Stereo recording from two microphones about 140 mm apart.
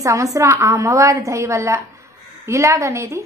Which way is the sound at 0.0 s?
25° right (ahead or behind).